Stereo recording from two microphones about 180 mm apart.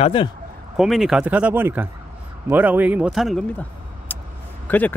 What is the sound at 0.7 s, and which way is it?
Speech, centre (ahead or behind).